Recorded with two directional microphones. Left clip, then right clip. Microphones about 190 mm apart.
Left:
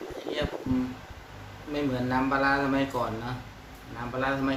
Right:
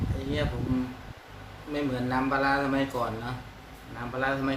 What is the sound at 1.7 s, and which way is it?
A man's voice, 5° left (ahead or behind).